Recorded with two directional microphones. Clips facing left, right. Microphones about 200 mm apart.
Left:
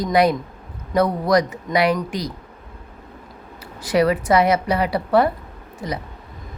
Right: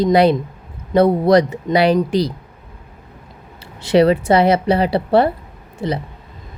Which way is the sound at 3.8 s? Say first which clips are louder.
Right 5 dB; 25° right (ahead or behind).